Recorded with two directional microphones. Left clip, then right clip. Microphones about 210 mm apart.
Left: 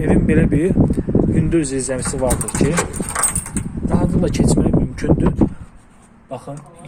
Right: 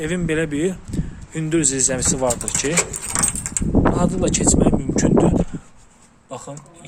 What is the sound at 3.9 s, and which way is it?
Speech, 15° right (ahead or behind).